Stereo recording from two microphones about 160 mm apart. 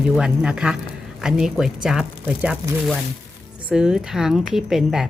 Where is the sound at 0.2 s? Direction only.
5° right (ahead or behind).